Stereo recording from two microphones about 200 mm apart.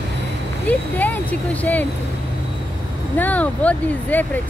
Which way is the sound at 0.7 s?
10° left (ahead or behind).